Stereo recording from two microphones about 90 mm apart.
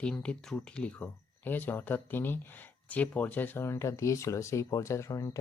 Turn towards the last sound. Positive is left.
turn(degrees=35)  # may be behind; listen again after turning